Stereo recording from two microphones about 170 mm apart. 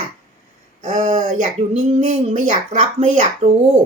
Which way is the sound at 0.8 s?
45° right (ahead or behind).